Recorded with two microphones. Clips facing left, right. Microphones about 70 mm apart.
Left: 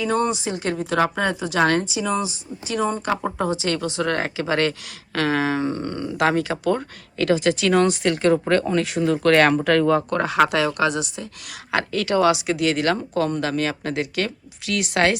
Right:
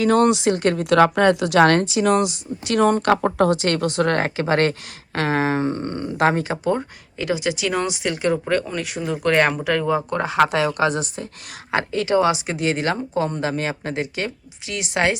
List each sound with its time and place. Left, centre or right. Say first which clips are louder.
0.0 s a woman's voice: right 6 dB; right; by 7.3 s centre
7.3 s speech: left 3 dB; centre
10.1 s speech: even; centre